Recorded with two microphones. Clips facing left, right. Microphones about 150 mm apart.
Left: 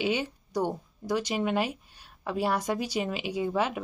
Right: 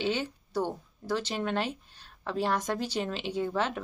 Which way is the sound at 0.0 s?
10° left (ahead or behind).